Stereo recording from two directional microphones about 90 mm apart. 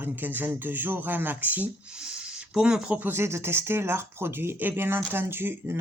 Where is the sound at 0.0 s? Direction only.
20° right (ahead or behind).